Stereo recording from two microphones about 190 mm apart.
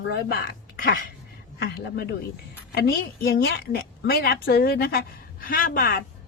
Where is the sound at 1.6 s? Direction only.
55° left (ahead or behind).